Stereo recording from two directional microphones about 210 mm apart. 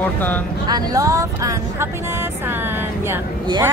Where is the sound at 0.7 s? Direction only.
15° right (ahead or behind).